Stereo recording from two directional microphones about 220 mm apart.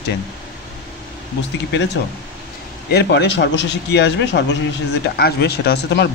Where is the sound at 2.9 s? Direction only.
50° left (ahead or behind).